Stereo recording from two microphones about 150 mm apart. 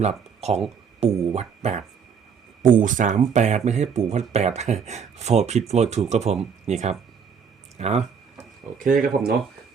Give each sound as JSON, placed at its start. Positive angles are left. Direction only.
{"t": 0.0, "sound": "speech", "side_deg": -45}
{"t": 2.6, "sound": "speech", "side_deg": -65}
{"t": 8.8, "sound": "speech", "side_deg": -70}